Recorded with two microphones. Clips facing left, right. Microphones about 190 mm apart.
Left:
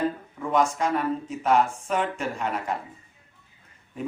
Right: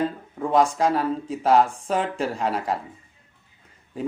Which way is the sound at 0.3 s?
35° right (ahead or behind).